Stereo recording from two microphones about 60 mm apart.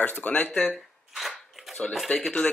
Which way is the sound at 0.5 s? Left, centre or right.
Centre.